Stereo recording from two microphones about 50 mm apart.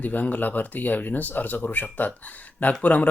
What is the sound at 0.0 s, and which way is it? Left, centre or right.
Speech, left.